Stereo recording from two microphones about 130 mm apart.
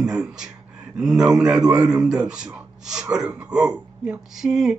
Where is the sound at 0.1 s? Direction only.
5° right (ahead or behind).